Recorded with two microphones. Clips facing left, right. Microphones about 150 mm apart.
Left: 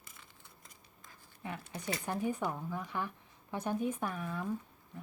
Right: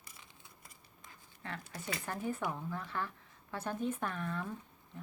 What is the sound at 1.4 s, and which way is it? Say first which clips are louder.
Speech: left 2 dB; 15° left (ahead or behind).